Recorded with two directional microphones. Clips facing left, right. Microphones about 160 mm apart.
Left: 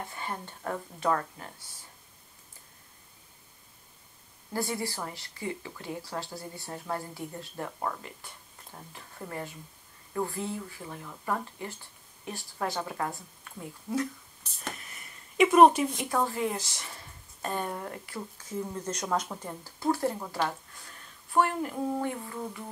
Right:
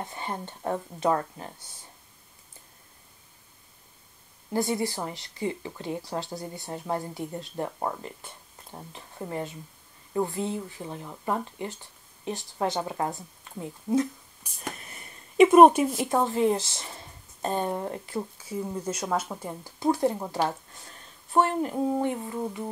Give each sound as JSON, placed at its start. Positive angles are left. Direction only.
{"t": 0.0, "sound": "speech", "side_deg": -20}
{"t": 4.5, "sound": "speech", "side_deg": -20}
{"t": 14.4, "sound": "speech", "side_deg": -10}
{"t": 14.9, "sound": "a sound", "side_deg": -25}
{"t": 16.0, "sound": "speech", "side_deg": -25}
{"t": 18.4, "sound": "speech", "side_deg": -10}
{"t": 19.6, "sound": "speech", "side_deg": -20}